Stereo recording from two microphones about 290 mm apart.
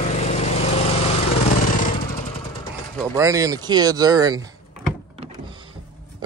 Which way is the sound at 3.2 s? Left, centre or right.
Centre.